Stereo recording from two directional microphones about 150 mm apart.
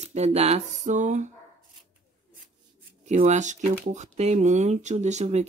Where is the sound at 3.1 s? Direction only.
50° right (ahead or behind).